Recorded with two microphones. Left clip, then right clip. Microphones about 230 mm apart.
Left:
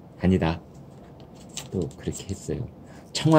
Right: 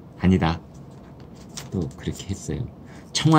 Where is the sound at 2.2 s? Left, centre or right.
Centre.